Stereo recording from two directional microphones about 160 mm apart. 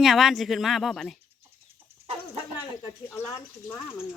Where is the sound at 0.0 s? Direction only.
Centre (ahead or behind).